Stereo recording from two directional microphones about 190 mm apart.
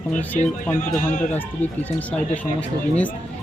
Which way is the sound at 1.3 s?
10° left (ahead or behind).